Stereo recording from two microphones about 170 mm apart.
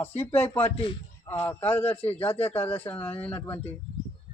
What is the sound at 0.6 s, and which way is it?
Speech, 30° left (ahead or behind).